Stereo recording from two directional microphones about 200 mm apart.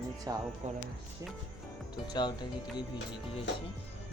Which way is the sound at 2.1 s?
20° left (ahead or behind).